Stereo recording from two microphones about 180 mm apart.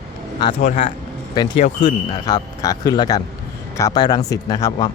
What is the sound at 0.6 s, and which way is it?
Speech, 45° left (ahead or behind).